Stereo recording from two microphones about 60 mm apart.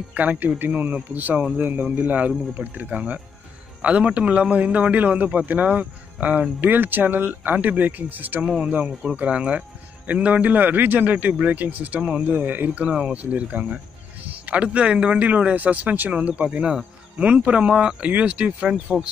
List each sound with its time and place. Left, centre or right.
0.1 s speech: right